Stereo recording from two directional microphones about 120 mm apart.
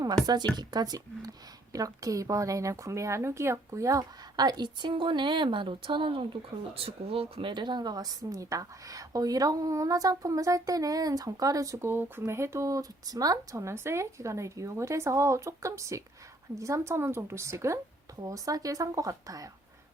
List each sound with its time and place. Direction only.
0.5 s a woman's voice: 35° right (ahead or behind)